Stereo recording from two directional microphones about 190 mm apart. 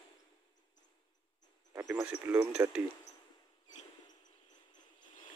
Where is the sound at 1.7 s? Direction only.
10° right (ahead or behind).